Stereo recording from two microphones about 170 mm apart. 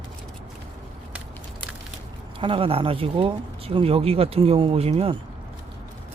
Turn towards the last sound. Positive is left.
turn(degrees=-35)  # may be behind; listen again after turning